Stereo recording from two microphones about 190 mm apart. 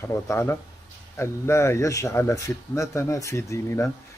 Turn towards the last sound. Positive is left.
turn(degrees=15)  # may be behind; listen again after turning